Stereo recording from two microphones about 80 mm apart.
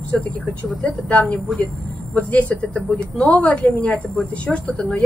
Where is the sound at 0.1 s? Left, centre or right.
Centre.